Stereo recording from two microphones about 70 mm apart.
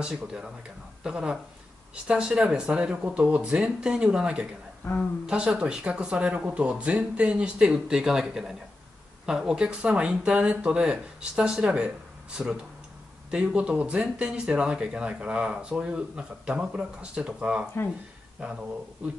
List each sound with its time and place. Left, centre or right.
0.0 s speech: centre